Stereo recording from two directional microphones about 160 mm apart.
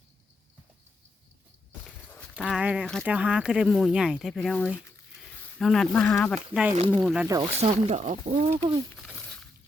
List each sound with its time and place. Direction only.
2.3 s speech: 5° right (ahead or behind)
2.8 s speech: 5° left (ahead or behind)
3.1 s speech: 5° right (ahead or behind)
6.5 s speech: 5° right (ahead or behind)
7.3 s speech: 20° right (ahead or behind)
7.6 s speech: 40° right (ahead or behind)
8.3 s speech: 35° right (ahead or behind)
9.0 s a sound: 5° left (ahead or behind)